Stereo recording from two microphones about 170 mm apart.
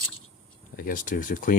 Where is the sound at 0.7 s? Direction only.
55° left (ahead or behind).